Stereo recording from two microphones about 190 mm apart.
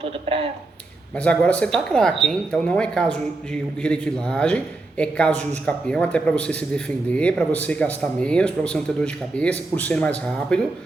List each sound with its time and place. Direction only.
0.0 s speech: 30° right (ahead or behind)
1.1 s speech: 5° left (ahead or behind)